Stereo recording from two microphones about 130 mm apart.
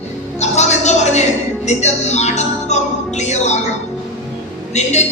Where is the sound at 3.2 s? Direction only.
60° left (ahead or behind).